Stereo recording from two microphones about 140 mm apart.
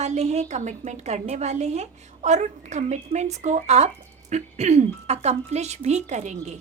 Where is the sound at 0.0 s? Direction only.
55° right (ahead or behind).